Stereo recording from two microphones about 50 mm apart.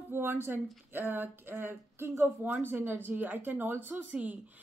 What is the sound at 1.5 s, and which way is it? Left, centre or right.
Speech, right.